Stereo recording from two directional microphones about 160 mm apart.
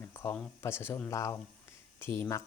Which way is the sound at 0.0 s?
20° left (ahead or behind).